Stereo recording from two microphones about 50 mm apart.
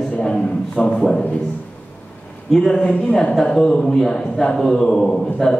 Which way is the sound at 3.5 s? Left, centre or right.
Centre.